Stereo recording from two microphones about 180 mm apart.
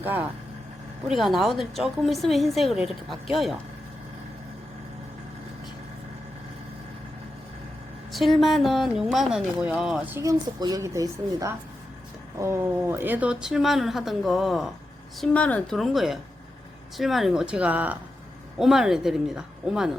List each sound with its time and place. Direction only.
0.0 s a woman's voice: 10° right (ahead or behind)
8.1 s a woman's voice: centre (ahead or behind)
10.2 s a woman's voice: 20° right (ahead or behind); by 19.9 s 5° right (ahead or behind)